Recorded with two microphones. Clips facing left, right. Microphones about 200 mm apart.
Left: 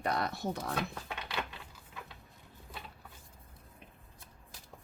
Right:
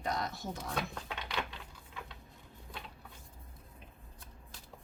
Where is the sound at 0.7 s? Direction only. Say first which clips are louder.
Left 1 dB; 5° left (ahead or behind).